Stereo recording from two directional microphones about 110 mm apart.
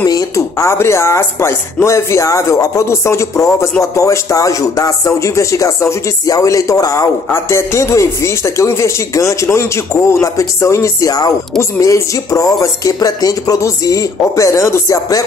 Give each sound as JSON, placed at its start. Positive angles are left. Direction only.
{"t": 0.0, "sound": "a man's voice", "side_deg": 30}